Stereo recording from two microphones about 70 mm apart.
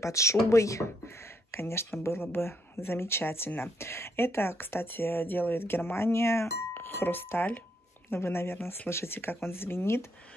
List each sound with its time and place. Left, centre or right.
0.0 s speech: left